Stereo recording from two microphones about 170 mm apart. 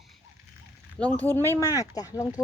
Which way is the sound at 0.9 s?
10° left (ahead or behind).